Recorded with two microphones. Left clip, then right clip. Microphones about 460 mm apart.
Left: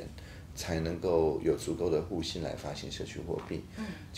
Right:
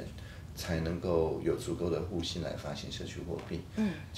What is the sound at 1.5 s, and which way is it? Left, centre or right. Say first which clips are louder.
Speech: left 3 dB; left.